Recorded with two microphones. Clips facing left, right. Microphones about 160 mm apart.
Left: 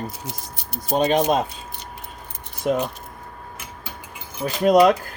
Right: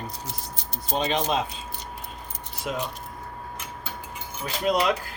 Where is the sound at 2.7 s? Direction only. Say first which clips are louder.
Left 9 dB; 50° left (ahead or behind).